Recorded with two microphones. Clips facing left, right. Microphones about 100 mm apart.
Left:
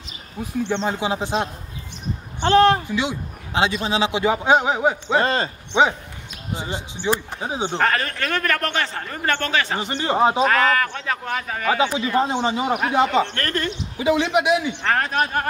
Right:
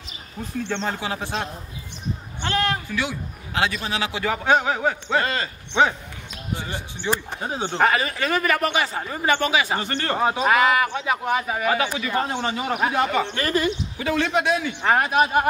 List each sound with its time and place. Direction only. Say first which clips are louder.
0.4 s speech: left 4 dB; 15° left (ahead or behind)
2.4 s a man's voice: left 9 dB; 30° left (ahead or behind)
2.9 s a man's voice: left 3 dB; 20° left (ahead or behind)
5.2 s speech: left 5 dB; 30° left (ahead or behind)
5.7 s speech: left 1 dB; 15° left (ahead or behind)
7.7 s a man's voice: right 3 dB; 5° right (ahead or behind)
9.8 s speech: left 4 dB; 15° left (ahead or behind)
10.4 s a man's voice: even; 10° right (ahead or behind)
11.7 s a man's voice: left 7 dB; 20° left (ahead or behind)
13.2 s a man's voice: right 1 dB; 10° right (ahead or behind)
13.9 s speech: left 6 dB; 15° left (ahead or behind)
14.8 s a man's voice: right 2 dB; 15° right (ahead or behind)